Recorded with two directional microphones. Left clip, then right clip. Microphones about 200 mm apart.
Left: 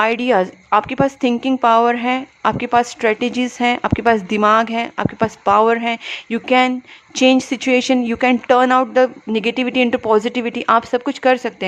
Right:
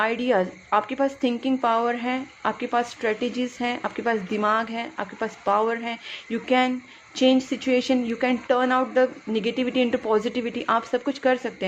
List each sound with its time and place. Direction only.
0.0 s a woman's voice: 25° left (ahead or behind)